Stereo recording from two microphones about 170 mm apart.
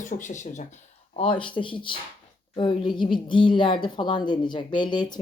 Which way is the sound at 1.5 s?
30° left (ahead or behind).